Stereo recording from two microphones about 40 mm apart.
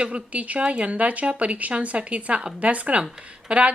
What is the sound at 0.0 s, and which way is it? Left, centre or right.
A woman's voice, right.